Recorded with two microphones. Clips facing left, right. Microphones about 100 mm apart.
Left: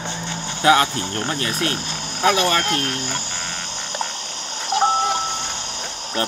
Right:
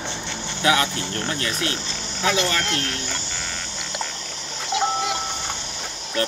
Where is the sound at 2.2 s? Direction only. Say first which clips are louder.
Left 4 dB; 55° left (ahead or behind).